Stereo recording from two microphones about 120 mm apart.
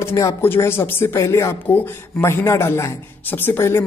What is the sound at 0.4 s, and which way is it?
Speech, 20° left (ahead or behind).